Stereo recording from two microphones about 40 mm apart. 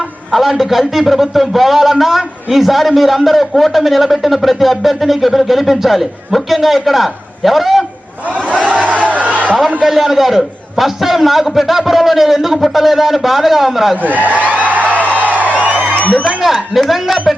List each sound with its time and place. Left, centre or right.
0.3 s a man's voice: centre
8.3 s a sound: right
8.6 s crowd: right
9.8 s a man's voice: centre
13.9 s a man's voice: right
14.4 s music: right
16.0 s a sound: left
16.4 s a man's voice: centre